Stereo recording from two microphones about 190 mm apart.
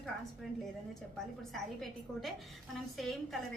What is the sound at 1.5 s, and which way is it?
A woman's voice, centre (ahead or behind).